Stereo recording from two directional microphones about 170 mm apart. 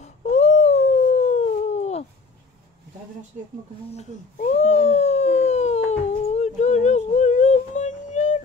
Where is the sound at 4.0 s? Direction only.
40° left (ahead or behind).